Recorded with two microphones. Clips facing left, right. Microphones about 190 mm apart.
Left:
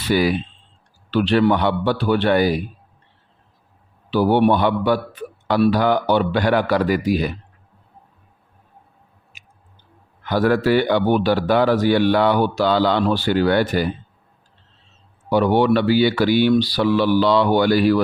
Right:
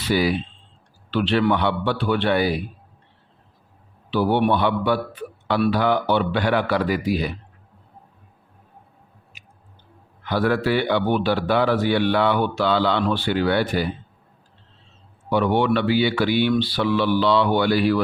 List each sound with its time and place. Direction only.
0.1 s a man's voice: 50° left (ahead or behind)
4.1 s a man's voice: 40° left (ahead or behind)
10.2 s a man's voice: 45° left (ahead or behind)
15.3 s speech: 40° left (ahead or behind)